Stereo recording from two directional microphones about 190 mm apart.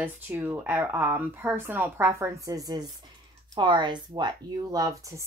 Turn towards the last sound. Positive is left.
turn(degrees=-20)  # may be behind; listen again after turning